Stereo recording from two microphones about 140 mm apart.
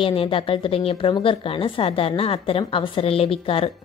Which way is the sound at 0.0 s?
40° left (ahead or behind).